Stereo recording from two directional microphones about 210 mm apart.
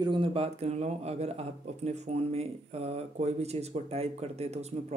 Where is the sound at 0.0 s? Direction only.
25° right (ahead or behind).